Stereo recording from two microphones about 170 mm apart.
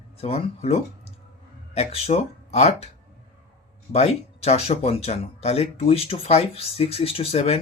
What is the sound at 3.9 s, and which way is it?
Speech, 40° left (ahead or behind).